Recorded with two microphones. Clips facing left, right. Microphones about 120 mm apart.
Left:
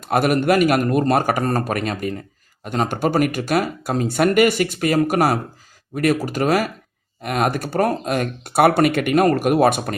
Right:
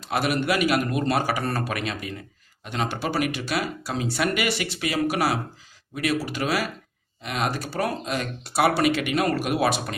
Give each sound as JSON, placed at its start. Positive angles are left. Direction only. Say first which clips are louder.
{"t": 0.0, "sound": "speech", "louder": "left 7 dB", "side_deg": 50}